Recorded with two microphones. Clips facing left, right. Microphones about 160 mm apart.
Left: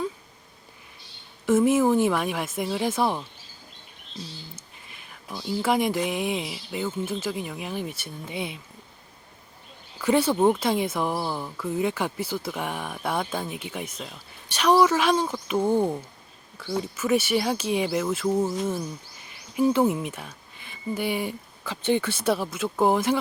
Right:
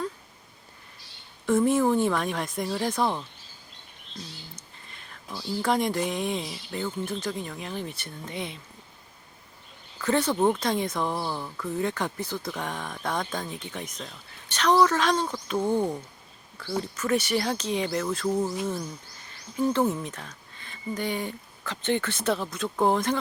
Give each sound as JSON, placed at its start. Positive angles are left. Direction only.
{"t": 1.5, "sound": "speech", "side_deg": 5}
{"t": 4.5, "sound": "a sound", "side_deg": 10}
{"t": 5.3, "sound": "speech", "side_deg": 20}
{"t": 5.6, "sound": "speech", "side_deg": 5}
{"t": 10.0, "sound": "speech", "side_deg": 10}